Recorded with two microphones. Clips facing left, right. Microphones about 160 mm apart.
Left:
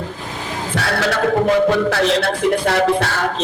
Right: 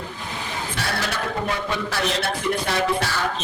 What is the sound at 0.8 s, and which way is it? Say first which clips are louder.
Speech: left 9 dB; 75° left (ahead or behind).